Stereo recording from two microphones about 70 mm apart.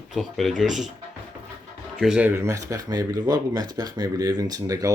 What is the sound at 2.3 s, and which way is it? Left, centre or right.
Speech, right.